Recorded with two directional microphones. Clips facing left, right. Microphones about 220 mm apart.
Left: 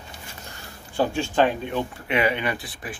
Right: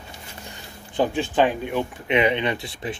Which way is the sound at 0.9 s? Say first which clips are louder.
Right 1 dB; 15° right (ahead or behind).